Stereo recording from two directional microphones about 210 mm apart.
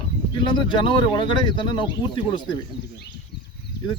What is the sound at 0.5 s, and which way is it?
Speech, 20° left (ahead or behind).